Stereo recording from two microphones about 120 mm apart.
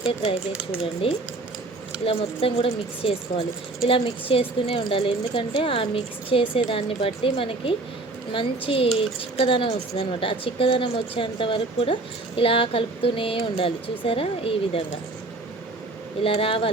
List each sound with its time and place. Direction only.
1.0 s speech: 50° left (ahead or behind)
16.2 s speech: 50° left (ahead or behind)